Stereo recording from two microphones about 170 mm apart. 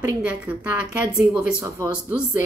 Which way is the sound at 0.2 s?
10° right (ahead or behind).